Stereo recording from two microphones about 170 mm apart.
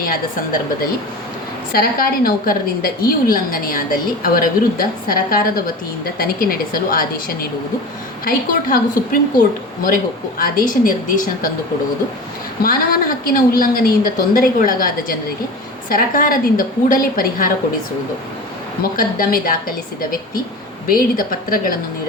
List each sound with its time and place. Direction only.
1.7 s a woman's voice: 60° left (ahead or behind)
12.6 s a woman's voice: 55° left (ahead or behind)
18.8 s a woman's voice: 55° left (ahead or behind)